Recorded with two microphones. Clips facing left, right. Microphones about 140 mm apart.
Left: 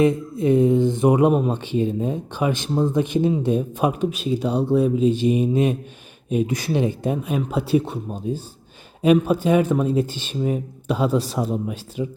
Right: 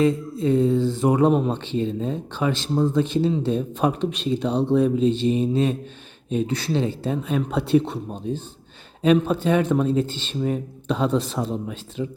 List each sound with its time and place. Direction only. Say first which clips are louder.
0.0 s speech: left 2 dB; 20° left (ahead or behind)
1.3 s speech: left 1 dB; 10° left (ahead or behind)